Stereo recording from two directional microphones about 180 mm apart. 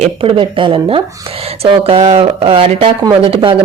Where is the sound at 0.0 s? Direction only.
30° right (ahead or behind).